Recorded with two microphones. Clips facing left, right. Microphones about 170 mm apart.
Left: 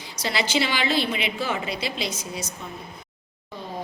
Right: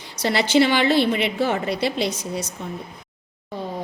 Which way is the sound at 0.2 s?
60° right (ahead or behind).